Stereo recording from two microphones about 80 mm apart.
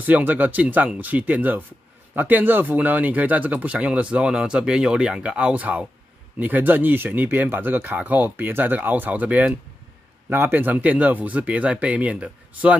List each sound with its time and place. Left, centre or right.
0.0 s speech: right